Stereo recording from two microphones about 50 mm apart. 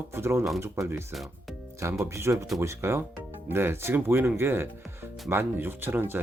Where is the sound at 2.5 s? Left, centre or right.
Right.